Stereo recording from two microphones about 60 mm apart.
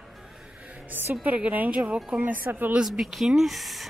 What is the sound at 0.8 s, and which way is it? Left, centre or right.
A woman's voice, right.